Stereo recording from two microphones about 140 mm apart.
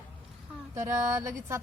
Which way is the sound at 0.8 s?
20° right (ahead or behind).